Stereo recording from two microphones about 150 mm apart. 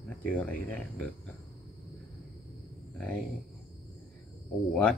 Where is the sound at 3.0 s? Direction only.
5° left (ahead or behind).